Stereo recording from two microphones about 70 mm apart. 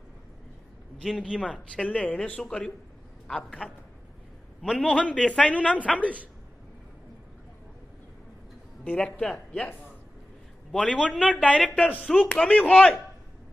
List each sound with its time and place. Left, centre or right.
1.3 s speech: centre
1.8 s a man's voice: centre
5.9 s a woman's voice: right
8.8 s a man's voice: centre
10.7 s a man's voice: centre